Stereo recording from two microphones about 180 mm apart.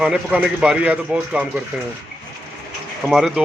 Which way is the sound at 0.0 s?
5° right (ahead or behind).